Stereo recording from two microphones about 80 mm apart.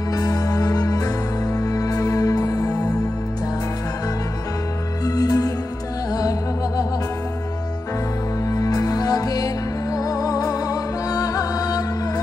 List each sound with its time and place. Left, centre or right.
0.1 s music: left
5.0 s music: left
8.5 s music: left